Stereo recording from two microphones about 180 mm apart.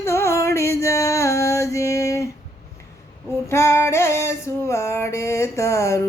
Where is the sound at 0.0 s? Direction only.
15° left (ahead or behind).